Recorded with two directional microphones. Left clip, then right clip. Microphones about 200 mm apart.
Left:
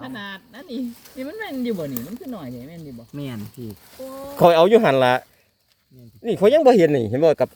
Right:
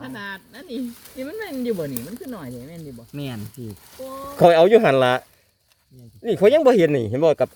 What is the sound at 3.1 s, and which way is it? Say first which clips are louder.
Speech: even; 30° right (ahead or behind).